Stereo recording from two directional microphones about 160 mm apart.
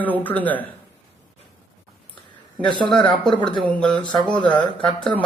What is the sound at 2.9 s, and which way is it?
A man's voice, 5° left (ahead or behind).